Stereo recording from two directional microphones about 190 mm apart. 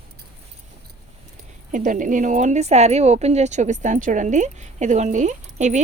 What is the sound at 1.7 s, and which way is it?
Speech, 45° right (ahead or behind).